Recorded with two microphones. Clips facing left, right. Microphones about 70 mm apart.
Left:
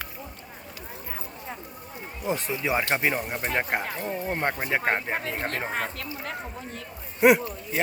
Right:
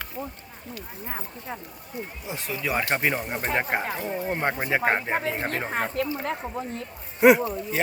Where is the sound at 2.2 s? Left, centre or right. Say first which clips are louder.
Left 12 dB; left.